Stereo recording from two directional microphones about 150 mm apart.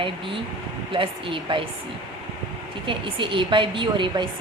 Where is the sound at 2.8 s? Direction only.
35° right (ahead or behind).